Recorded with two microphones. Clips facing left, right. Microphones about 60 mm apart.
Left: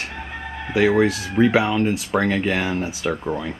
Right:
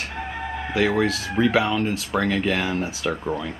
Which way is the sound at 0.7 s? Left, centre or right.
Centre.